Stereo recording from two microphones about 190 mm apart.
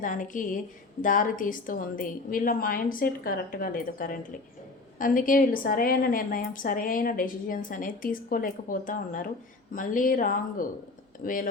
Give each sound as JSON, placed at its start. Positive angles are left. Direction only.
{"t": 0.0, "sound": "a woman's voice", "side_deg": 45}